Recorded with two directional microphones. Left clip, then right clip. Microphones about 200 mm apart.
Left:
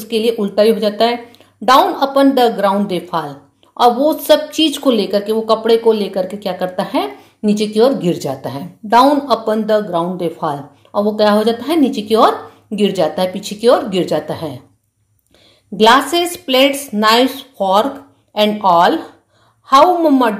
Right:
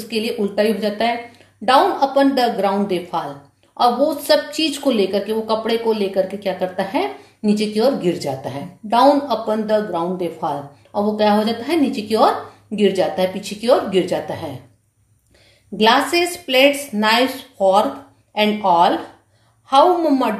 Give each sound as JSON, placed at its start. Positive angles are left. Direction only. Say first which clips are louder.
{"t": 0.1, "sound": "speech", "louder": "left 6 dB", "side_deg": 35}
{"t": 3.7, "sound": "speech", "louder": "left 4 dB", "side_deg": 35}
{"t": 15.8, "sound": "speech", "louder": "left 4 dB", "side_deg": 40}